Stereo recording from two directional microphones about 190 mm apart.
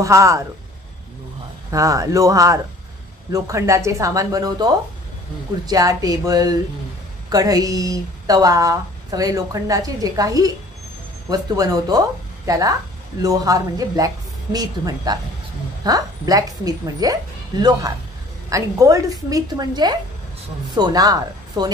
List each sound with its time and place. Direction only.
0.0 s speech: 15° right (ahead or behind)
1.7 s speech: 15° right (ahead or behind)
5.7 s speech: 20° right (ahead or behind)